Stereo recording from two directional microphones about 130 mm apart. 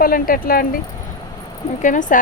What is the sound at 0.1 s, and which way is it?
Speech, 90° left.